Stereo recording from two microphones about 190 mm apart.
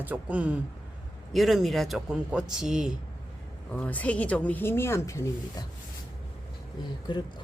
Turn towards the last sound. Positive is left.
turn(degrees=25)  # may be behind; listen again after turning